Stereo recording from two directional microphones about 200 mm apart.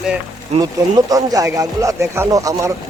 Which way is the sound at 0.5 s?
20° right (ahead or behind).